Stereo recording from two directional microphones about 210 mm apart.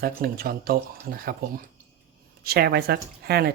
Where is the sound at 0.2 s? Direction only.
45° right (ahead or behind).